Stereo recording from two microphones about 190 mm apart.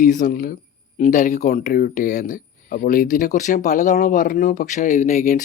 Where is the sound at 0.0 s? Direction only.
45° left (ahead or behind).